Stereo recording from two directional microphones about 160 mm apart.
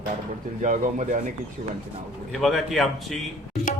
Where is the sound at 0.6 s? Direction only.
50° right (ahead or behind).